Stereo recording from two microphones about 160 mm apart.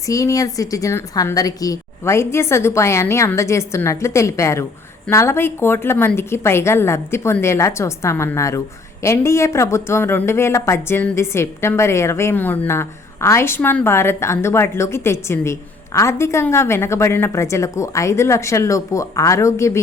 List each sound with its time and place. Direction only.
0.1 s speech: 20° left (ahead or behind)